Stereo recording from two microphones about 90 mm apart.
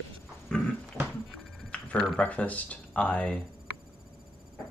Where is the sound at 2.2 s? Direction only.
15° left (ahead or behind).